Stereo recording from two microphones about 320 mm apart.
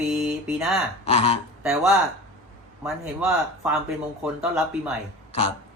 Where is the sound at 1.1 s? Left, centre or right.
Centre.